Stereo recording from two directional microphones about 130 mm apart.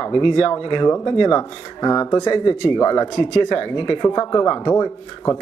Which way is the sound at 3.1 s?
55° left (ahead or behind).